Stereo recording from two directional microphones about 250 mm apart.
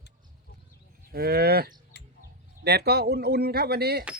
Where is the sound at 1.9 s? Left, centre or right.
Left.